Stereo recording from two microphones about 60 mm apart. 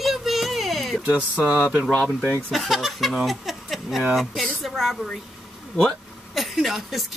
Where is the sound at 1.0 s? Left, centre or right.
Centre.